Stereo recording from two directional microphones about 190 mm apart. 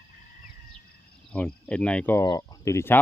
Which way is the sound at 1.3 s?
5° left (ahead or behind).